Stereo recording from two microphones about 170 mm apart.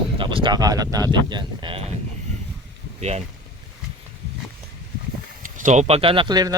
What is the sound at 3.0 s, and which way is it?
Speech, 40° right (ahead or behind).